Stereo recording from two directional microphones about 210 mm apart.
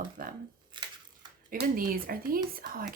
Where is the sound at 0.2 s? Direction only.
40° right (ahead or behind).